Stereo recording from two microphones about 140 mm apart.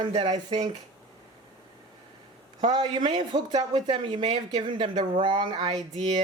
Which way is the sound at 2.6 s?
40° right (ahead or behind).